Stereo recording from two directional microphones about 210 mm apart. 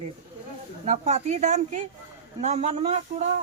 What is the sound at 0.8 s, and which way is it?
Speech, 35° right (ahead or behind).